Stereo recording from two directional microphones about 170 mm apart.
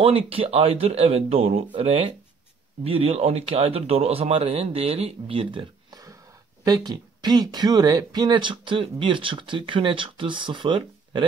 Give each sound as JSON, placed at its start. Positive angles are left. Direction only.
{"t": 0.0, "sound": "speech", "side_deg": -35}